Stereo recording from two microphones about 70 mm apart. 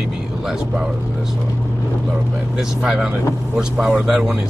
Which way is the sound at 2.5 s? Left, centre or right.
Centre.